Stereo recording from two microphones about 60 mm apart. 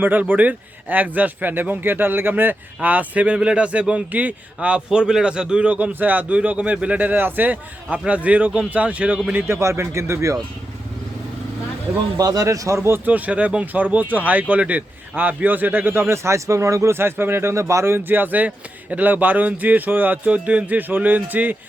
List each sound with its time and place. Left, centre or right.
0.0 s speech: right
9.5 s speech: right
12.1 s speech: right
13.1 s speech: right
16.9 s speech: right
17.9 s speech: right
20.3 s speech: right